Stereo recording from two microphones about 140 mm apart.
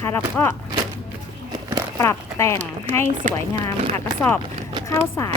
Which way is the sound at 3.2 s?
60° right (ahead or behind).